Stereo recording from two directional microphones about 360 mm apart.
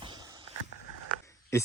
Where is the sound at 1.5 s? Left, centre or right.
Centre.